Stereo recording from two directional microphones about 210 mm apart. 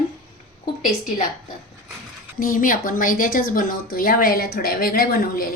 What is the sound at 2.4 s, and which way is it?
Speech, 40° left (ahead or behind).